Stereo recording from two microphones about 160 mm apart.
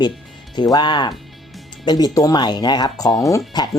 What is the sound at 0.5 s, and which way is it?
Speech, 25° left (ahead or behind).